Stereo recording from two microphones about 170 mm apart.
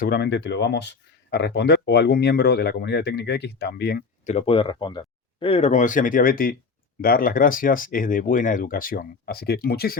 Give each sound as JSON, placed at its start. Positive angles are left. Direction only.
{"t": 0.0, "sound": "speech", "side_deg": 70}
{"t": 4.3, "sound": "speech", "side_deg": 35}